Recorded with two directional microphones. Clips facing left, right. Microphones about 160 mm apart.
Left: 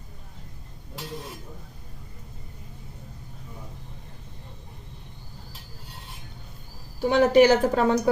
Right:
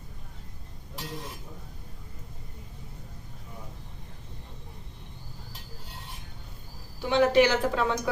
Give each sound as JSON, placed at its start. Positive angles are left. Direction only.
{"t": 7.0, "sound": "speech", "side_deg": 40}